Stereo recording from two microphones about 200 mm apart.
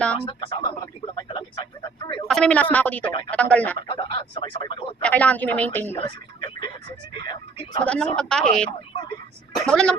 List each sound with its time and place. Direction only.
0.2 s a man's voice: 25° left (ahead or behind)
2.2 s speech: 5° left (ahead or behind)
3.1 s speech: 25° left (ahead or behind)
3.3 s speech: 5° left (ahead or behind)
3.8 s speech: 25° left (ahead or behind)
5.0 s speech: 5° left (ahead or behind)
6.0 s a sound: 25° left (ahead or behind)
7.2 s speech: 20° left (ahead or behind)
7.9 s a woman's voice: 5° left (ahead or behind)